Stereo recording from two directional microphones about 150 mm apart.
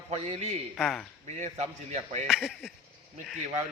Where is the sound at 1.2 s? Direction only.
45° right (ahead or behind).